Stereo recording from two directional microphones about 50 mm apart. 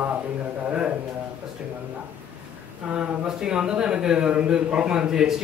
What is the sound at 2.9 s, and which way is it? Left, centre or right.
A man's voice, centre.